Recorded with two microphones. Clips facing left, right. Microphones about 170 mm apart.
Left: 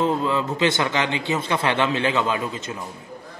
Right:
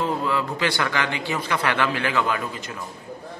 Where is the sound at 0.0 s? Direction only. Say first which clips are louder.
Left 3 dB; 20° left (ahead or behind).